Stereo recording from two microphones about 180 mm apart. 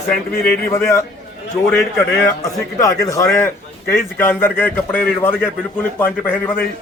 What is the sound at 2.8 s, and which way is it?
A man's voice, 15° left (ahead or behind).